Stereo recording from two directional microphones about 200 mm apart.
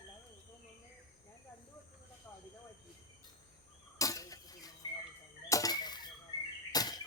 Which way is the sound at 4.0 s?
15° left (ahead or behind).